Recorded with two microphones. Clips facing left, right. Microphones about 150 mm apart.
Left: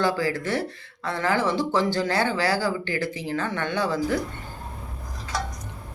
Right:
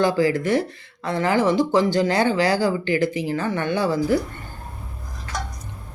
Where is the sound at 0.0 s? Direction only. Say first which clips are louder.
Right 5 dB; 15° right (ahead or behind).